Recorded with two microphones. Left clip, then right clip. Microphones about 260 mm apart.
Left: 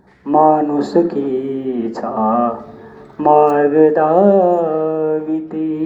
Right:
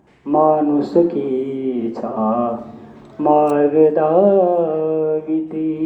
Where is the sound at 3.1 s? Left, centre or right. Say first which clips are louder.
Left 3 dB; left.